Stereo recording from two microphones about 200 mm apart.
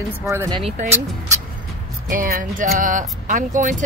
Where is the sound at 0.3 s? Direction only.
15° right (ahead or behind).